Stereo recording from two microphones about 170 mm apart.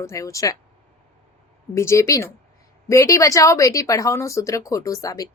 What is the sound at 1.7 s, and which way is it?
Speech, 15° left (ahead or behind).